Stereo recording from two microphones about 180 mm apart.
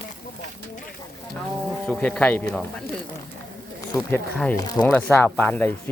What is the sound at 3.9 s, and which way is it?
Speech, 20° left (ahead or behind).